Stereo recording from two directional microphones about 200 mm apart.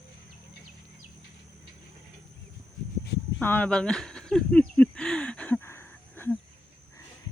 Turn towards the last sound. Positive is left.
turn(degrees=10)  # may be behind; listen again after turning